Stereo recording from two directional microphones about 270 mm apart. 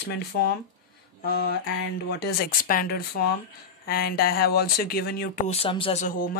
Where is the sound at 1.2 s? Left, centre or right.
Left.